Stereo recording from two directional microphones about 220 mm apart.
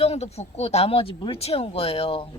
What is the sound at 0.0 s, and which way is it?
Speech, 30° left (ahead or behind).